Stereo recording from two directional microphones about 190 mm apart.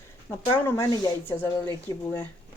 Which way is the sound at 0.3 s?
10° left (ahead or behind).